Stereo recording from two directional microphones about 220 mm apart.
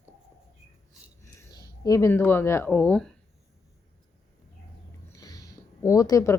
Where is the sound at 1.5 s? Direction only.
15° left (ahead or behind).